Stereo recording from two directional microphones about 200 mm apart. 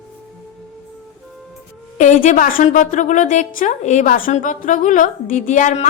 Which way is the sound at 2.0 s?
40° left (ahead or behind).